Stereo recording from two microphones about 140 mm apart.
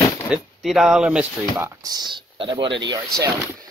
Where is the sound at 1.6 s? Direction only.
30° right (ahead or behind).